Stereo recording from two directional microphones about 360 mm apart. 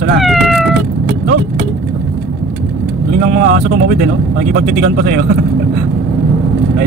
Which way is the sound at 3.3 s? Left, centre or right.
Right.